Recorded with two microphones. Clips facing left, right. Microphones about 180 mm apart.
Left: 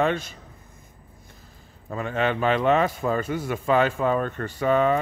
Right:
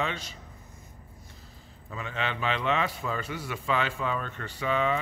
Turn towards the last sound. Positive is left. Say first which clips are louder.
# left 7 dB
turn(degrees=45)  # may be behind; listen again after turning